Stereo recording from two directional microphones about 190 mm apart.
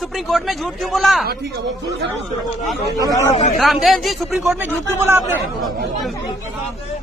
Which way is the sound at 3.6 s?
Centre (ahead or behind).